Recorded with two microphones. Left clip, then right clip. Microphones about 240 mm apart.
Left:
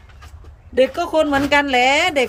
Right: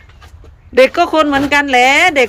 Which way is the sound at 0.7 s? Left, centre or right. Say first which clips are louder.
Right 7 dB; centre.